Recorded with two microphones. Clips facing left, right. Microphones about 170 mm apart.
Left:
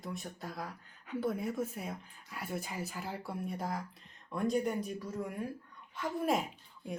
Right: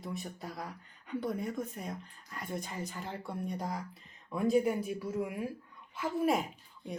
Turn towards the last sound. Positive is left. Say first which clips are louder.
# even
turn(degrees=0)  # may be behind; listen again after turning